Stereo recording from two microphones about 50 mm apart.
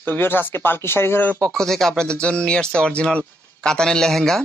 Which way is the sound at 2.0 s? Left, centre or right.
Centre.